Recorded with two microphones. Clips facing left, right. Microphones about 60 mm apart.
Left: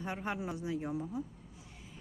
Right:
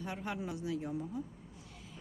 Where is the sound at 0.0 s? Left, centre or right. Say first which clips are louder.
Left 2 dB; left.